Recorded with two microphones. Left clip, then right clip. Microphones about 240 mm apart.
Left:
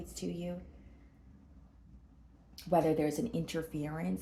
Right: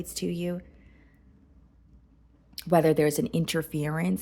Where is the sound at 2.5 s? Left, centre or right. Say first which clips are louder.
Right 7 dB; right.